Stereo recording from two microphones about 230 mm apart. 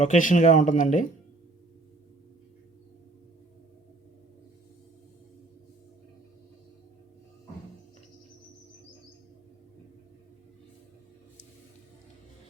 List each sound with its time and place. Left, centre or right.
0.0 s speech: left